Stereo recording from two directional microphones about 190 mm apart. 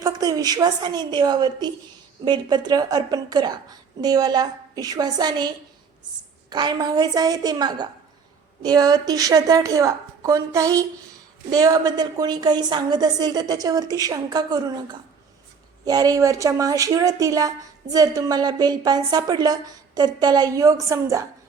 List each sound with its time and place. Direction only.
0.0 s speech: 20° right (ahead or behind)
6.5 s speech: 20° right (ahead or behind)